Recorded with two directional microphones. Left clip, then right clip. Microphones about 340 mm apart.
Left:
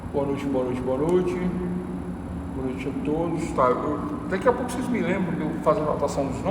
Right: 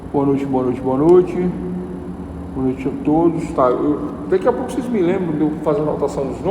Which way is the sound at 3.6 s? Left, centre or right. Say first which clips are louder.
Right 6 dB; centre.